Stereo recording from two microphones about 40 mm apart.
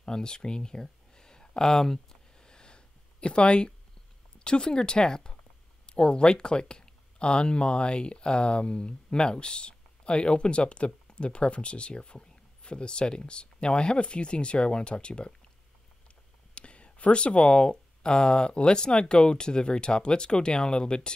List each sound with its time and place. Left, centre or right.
0.0 s a sound: centre
4.4 s speech: left
16.5 s speech: left